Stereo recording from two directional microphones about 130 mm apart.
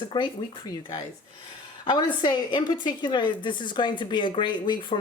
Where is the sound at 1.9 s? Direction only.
35° left (ahead or behind).